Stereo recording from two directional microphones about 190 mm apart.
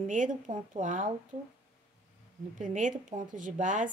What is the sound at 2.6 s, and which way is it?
A woman's voice, 40° right (ahead or behind).